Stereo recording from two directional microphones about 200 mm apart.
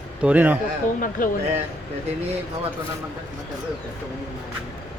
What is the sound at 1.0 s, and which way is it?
Speech, 45° left (ahead or behind).